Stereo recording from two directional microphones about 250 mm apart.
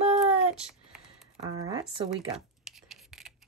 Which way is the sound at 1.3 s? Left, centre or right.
Centre.